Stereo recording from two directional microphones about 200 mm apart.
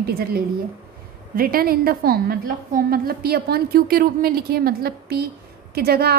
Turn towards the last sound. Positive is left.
turn(degrees=-50)  # may be behind; listen again after turning